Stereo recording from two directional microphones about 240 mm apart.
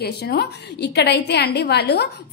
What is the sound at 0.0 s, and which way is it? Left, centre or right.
A woman's voice, left.